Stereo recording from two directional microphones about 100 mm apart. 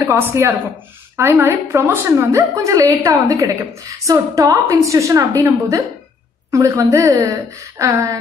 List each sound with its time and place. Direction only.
0.0 s a woman's voice: 25° right (ahead or behind)